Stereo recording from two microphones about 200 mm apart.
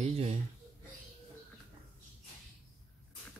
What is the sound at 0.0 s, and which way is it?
Speech, 30° right (ahead or behind).